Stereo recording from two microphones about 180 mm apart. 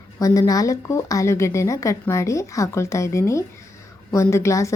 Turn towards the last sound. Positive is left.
turn(degrees=15)  # may be behind; listen again after turning